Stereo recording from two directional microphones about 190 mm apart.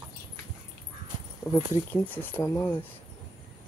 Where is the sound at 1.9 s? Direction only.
10° left (ahead or behind).